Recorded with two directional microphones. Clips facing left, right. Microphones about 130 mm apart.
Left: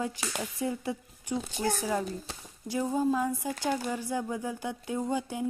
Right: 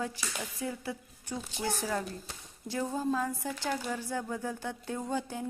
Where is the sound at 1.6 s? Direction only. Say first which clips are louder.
Left 2 dB; 45° left (ahead or behind).